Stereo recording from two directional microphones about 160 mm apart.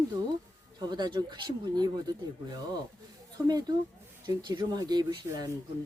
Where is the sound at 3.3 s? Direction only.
25° right (ahead or behind).